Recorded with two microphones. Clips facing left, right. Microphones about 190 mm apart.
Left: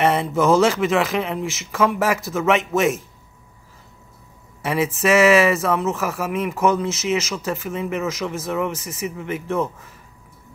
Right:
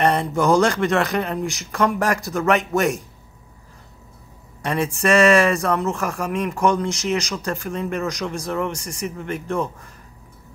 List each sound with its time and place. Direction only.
0.0 s speech: 5° left (ahead or behind)
4.6 s speech: 5° left (ahead or behind)